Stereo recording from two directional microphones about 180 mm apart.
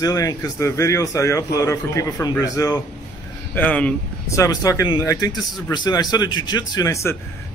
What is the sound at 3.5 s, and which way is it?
Speech, 5° left (ahead or behind).